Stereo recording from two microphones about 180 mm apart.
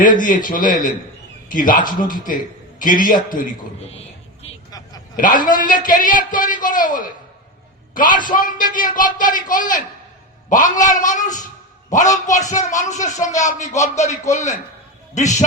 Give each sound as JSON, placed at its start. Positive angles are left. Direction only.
{"t": 0.0, "sound": "a man's voice", "side_deg": 50}
{"t": 5.1, "sound": "a man's voice", "side_deg": 50}